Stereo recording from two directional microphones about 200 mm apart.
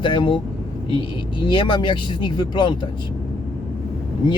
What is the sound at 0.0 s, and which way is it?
Speech, 25° left (ahead or behind).